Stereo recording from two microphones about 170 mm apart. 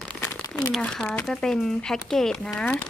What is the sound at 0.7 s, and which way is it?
Speech, 5° left (ahead or behind).